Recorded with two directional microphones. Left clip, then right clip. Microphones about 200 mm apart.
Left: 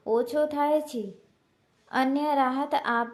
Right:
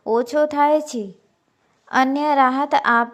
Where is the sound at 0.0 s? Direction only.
25° right (ahead or behind).